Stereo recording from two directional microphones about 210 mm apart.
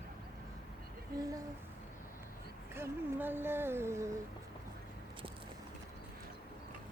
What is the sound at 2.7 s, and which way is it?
Speech, 10° right (ahead or behind).